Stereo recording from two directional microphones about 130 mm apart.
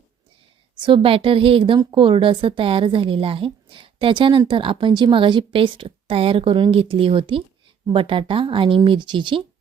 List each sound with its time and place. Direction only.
0.8 s a woman's voice: 40° right (ahead or behind)